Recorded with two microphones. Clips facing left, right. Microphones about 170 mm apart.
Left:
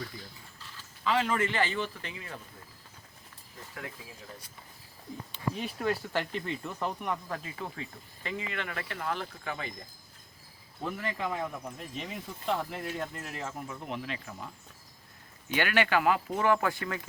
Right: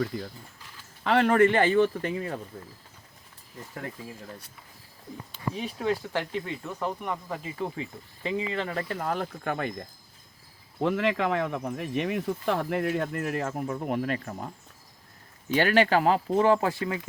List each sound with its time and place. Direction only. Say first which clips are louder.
1.0 s speech: right 8 dB; 60° right (ahead or behind); by 2.4 s 45° right (ahead or behind)
5.3 s speech: right 2 dB; centre (ahead or behind)
6.1 s speech: right 2 dB; 15° right (ahead or behind)
8.2 s speech: right 7 dB; 25° right (ahead or behind); by 9.8 s 55° right (ahead or behind)
10.8 s speech: right 10 dB; 90° right; by 14.5 s 45° right (ahead or behind)
15.4 s speech: right 6 dB; 35° right (ahead or behind)